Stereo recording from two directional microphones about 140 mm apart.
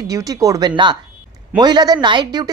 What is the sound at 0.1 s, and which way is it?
Speech, 25° right (ahead or behind).